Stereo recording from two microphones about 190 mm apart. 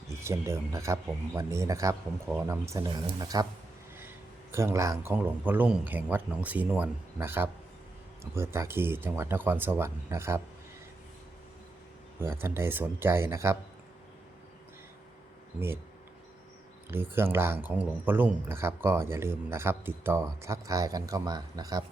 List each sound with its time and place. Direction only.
0.1 s a man's voice: 15° right (ahead or behind)
4.5 s speech: 15° right (ahead or behind)
12.2 s speech: 10° right (ahead or behind)
16.9 s speech: 10° right (ahead or behind)